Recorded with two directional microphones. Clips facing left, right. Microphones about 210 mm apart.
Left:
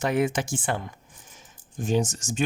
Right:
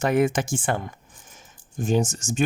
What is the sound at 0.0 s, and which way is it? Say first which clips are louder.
Speech: right 3 dB; 50° right (ahead or behind).